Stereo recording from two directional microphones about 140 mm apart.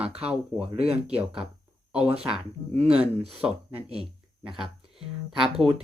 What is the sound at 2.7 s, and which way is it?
Speech, 45° right (ahead or behind).